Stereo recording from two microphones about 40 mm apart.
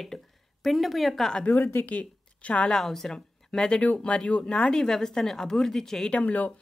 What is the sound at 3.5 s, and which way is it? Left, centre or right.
Speech, left.